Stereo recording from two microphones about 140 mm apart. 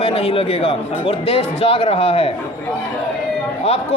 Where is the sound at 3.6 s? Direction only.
45° left (ahead or behind).